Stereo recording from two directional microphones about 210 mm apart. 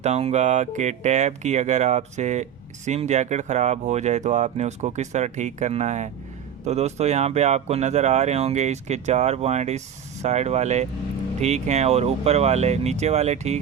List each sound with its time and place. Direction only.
0.0 s speech: 30° right (ahead or behind)